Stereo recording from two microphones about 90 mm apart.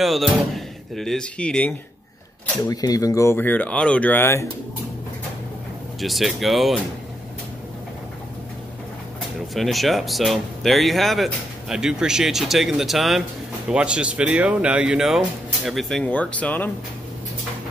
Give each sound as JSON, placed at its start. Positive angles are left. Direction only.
{"t": 0.0, "sound": "speech", "side_deg": 0}
{"t": 2.7, "sound": "speech", "side_deg": 45}
{"t": 3.3, "sound": "speech", "side_deg": 20}
{"t": 5.9, "sound": "speech", "side_deg": 0}
{"t": 9.5, "sound": "speech", "side_deg": 0}
{"t": 16.1, "sound": "speech", "side_deg": 15}